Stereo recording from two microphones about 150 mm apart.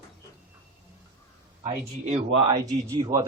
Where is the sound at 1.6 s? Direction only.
50° right (ahead or behind).